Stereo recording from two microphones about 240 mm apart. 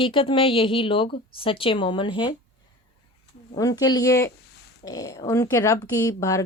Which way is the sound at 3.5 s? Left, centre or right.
Centre.